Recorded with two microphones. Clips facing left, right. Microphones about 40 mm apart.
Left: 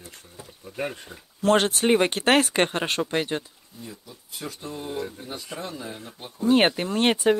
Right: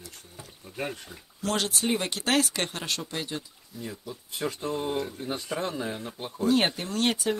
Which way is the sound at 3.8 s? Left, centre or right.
Right.